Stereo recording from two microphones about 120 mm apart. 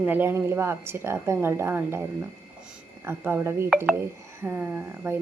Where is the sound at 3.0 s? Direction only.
20° right (ahead or behind).